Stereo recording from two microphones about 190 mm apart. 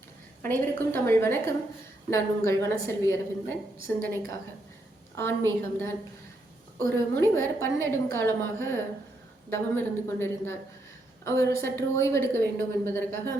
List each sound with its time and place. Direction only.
0.4 s a woman's voice: 10° left (ahead or behind)
5.1 s a woman's voice: 15° left (ahead or behind)